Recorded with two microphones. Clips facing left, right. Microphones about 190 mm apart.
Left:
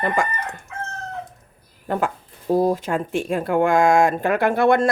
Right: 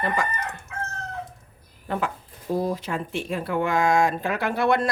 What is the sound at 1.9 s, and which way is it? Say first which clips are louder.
Speech: left 4 dB; 45° left (ahead or behind).